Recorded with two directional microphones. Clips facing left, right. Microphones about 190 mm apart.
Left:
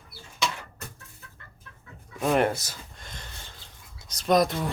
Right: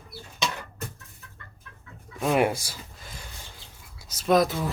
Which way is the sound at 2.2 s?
5° right (ahead or behind).